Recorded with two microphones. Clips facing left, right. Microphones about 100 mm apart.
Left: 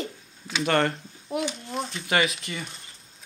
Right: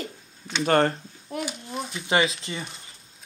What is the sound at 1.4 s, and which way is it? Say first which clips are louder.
Speech: left 2 dB; 5° right (ahead or behind).